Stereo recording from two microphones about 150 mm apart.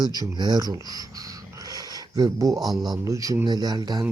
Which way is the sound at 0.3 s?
30° right (ahead or behind).